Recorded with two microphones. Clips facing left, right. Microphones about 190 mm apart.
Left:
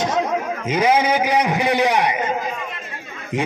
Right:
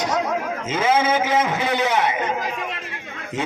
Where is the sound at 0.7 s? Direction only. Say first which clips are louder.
Left 2 dB; 15° left (ahead or behind).